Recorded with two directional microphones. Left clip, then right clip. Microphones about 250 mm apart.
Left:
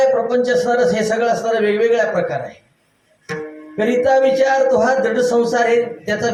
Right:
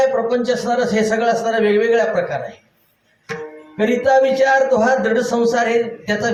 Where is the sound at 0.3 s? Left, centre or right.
Right.